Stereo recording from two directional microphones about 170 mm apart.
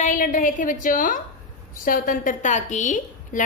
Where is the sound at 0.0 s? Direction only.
50° left (ahead or behind).